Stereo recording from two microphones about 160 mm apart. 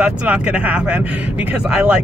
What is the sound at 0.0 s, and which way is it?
Speech, 5° right (ahead or behind).